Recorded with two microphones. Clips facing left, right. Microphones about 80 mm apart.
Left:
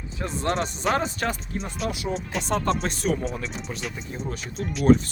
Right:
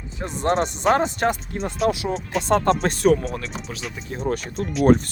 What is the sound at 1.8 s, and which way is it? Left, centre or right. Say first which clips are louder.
Speech: right 7 dB; right.